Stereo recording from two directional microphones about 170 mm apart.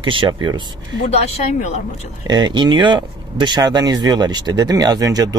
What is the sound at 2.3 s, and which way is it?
Speech, 25° right (ahead or behind).